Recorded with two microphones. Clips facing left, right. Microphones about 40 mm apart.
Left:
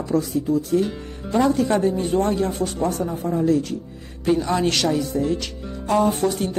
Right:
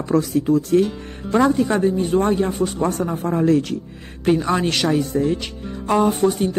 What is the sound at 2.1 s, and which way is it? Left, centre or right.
Speech, right.